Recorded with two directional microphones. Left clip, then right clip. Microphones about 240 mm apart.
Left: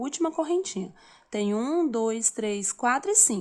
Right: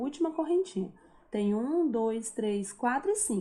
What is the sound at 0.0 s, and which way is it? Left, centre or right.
Speech, left.